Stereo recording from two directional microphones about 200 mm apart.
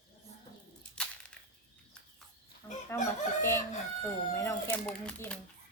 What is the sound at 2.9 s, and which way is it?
Chicken, 15° left (ahead or behind).